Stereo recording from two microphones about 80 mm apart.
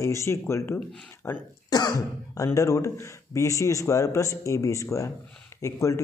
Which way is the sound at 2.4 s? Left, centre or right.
Left.